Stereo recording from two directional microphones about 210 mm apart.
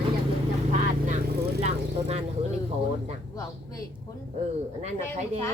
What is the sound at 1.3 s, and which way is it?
Speech, 50° right (ahead or behind).